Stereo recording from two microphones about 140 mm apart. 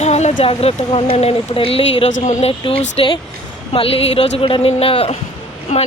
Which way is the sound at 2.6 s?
45° left (ahead or behind).